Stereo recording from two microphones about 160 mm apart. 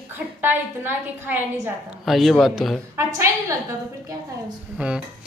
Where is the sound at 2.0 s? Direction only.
Centre (ahead or behind).